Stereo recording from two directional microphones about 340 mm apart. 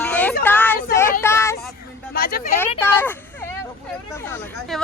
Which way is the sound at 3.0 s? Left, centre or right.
Centre.